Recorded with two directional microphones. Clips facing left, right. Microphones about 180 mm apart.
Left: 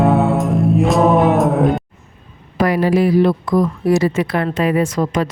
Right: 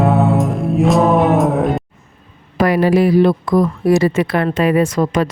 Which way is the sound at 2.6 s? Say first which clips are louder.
Right 2 dB; 65° right (ahead or behind).